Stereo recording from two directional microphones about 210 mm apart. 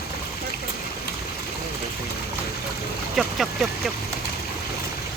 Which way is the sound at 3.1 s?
Centre (ahead or behind).